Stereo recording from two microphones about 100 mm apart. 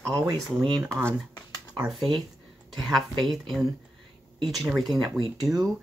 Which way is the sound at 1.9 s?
Centre (ahead or behind).